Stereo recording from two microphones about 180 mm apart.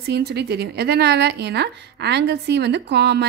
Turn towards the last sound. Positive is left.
turn(degrees=-70)  # may be behind; listen again after turning